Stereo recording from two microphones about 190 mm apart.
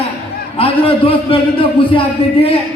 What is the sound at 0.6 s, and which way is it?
A man's voice, 30° left (ahead or behind).